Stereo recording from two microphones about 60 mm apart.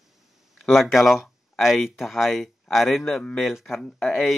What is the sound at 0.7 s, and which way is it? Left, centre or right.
Speech, centre.